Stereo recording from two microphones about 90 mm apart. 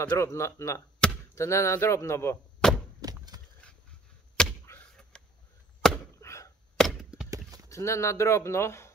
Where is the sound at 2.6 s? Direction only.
10° left (ahead or behind).